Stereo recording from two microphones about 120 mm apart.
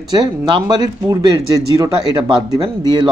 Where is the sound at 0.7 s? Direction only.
35° right (ahead or behind).